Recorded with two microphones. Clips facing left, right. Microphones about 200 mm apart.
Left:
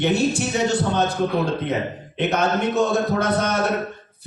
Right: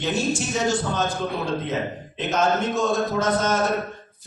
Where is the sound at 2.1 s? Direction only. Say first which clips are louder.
Left 1 dB; 65° left (ahead or behind).